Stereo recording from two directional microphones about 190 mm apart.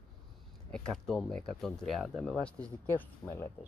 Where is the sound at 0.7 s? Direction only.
Centre (ahead or behind).